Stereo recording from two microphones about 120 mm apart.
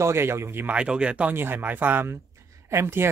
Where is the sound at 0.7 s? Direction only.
10° right (ahead or behind).